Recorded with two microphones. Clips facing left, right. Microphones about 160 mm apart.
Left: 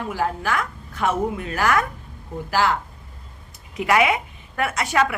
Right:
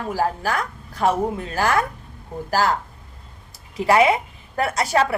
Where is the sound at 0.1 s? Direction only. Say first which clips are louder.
Right 2 dB; 35° right (ahead or behind).